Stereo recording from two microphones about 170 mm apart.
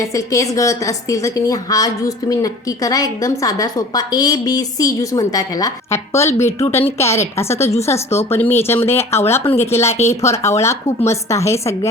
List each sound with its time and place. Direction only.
0.0 s a woman's voice: 20° left (ahead or behind)